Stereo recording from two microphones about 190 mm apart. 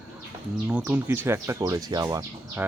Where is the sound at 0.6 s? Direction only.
10° right (ahead or behind).